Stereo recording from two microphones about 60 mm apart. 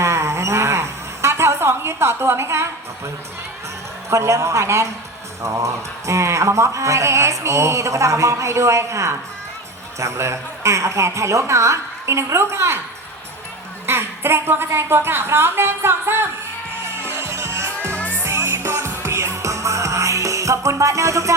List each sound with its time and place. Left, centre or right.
0.0 s a sound: right
4.1 s a woman's voice: right
13.8 s a woman's voice: right
17.0 s music: right
17.9 s music: left
18.2 s music: right